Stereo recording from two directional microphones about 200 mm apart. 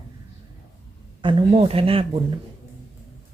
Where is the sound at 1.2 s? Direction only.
25° right (ahead or behind).